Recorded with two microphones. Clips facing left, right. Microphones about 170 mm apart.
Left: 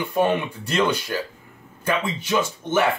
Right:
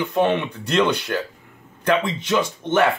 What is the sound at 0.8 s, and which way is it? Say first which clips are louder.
Speech: right 1 dB; 70° right (ahead or behind).